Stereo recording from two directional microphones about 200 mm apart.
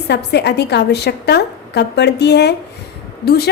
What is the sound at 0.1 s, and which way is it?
Speech, 55° left (ahead or behind).